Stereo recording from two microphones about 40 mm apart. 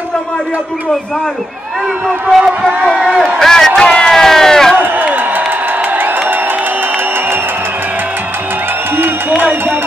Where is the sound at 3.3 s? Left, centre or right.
Centre.